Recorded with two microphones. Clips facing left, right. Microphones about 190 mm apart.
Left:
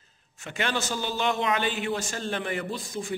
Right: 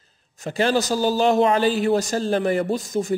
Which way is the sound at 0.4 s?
35° right (ahead or behind).